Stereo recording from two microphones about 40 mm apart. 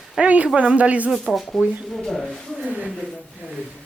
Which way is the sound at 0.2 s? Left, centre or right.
Right.